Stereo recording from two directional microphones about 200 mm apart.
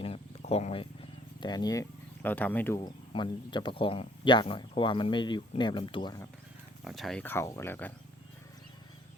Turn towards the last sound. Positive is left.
turn(degrees=10)  # may be behind; listen again after turning